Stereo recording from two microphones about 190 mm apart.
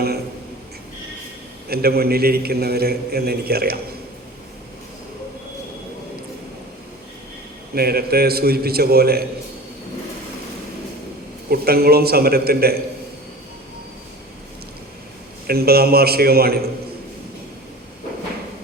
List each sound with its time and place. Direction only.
1.7 s a man's voice: 55° right (ahead or behind)
7.8 s a man's voice: 55° right (ahead or behind)
11.4 s a man's voice: 55° right (ahead or behind)
15.4 s a man's voice: 55° right (ahead or behind)